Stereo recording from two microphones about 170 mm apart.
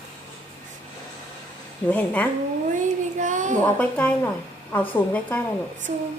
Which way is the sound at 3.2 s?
45° right (ahead or behind).